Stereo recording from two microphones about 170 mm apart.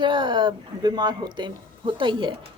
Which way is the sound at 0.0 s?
30° right (ahead or behind).